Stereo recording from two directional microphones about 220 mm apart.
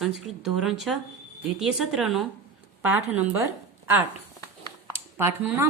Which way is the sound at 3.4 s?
10° right (ahead or behind).